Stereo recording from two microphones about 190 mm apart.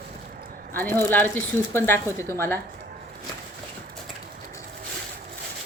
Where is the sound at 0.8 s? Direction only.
10° left (ahead or behind).